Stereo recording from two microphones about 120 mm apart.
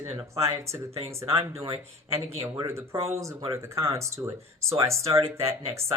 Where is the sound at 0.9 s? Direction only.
55° right (ahead or behind).